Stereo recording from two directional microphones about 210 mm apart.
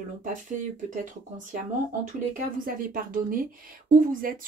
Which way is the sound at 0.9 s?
40° right (ahead or behind).